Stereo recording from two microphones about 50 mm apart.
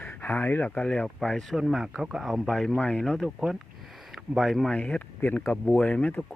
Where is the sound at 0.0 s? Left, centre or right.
Left.